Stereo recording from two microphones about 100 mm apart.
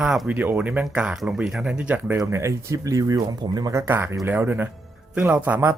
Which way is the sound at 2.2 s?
30° right (ahead or behind).